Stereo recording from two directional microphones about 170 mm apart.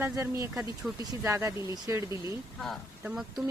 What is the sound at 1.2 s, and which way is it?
Speech, 15° right (ahead or behind).